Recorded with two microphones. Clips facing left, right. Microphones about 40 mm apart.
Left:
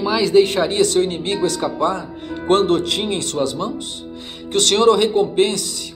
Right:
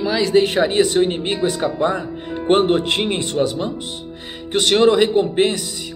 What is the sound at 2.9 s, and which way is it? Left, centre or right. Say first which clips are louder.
Speech: right 2 dB; right.